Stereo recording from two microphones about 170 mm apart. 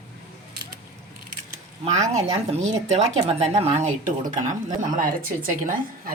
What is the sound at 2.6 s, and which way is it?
A woman's voice, 40° right (ahead or behind).